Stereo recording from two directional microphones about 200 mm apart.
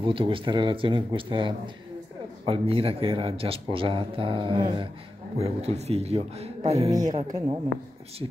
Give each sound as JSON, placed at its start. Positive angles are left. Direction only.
{"t": 0.0, "sound": "a man's voice", "side_deg": -25}
{"t": 6.9, "sound": "speech", "side_deg": -20}
{"t": 7.2, "sound": "speech", "side_deg": -30}